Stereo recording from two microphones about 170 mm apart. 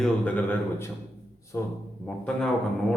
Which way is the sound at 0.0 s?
10° left (ahead or behind).